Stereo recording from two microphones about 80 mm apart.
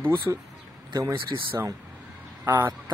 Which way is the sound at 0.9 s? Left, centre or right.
Right.